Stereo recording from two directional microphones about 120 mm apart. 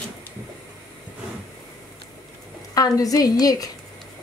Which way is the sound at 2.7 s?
30° left (ahead or behind).